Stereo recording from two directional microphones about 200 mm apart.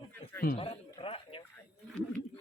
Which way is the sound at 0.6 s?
25° left (ahead or behind).